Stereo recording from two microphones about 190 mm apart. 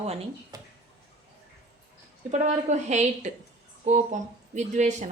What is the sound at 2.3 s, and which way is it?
A woman's voice, 40° right (ahead or behind).